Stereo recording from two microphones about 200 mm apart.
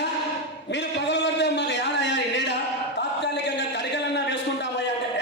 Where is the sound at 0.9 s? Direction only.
60° left (ahead or behind).